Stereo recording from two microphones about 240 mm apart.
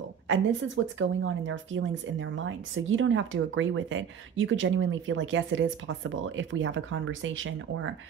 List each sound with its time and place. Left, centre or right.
0.3 s speech: right